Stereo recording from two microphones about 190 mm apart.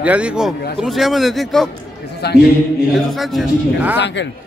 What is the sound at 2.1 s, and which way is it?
Speech, 60° left (ahead or behind).